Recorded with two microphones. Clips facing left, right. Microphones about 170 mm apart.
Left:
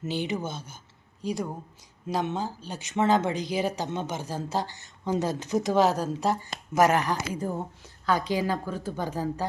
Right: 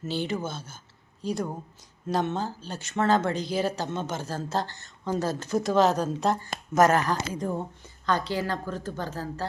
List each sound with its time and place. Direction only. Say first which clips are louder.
0.0 s speech: even; 15° left (ahead or behind)